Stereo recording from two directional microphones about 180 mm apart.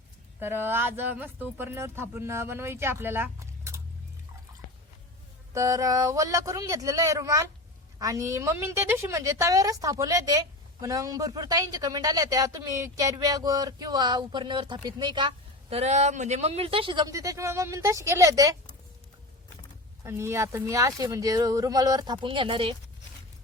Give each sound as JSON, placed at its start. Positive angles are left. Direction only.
{"t": 0.3, "sound": "speech", "side_deg": -10}
{"t": 5.5, "sound": "a woman's voice", "side_deg": -20}
{"t": 20.1, "sound": "a woman's voice", "side_deg": -15}